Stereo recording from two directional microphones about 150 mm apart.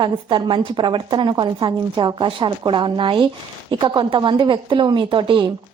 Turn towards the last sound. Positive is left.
turn(degrees=-30)  # may be behind; listen again after turning